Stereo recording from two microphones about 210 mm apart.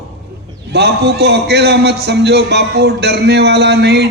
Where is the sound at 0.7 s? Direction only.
50° right (ahead or behind).